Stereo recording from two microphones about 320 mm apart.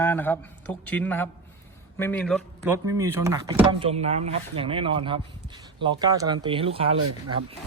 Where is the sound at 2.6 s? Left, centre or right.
Centre.